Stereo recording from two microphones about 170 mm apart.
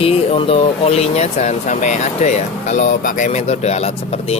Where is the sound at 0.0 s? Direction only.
35° left (ahead or behind).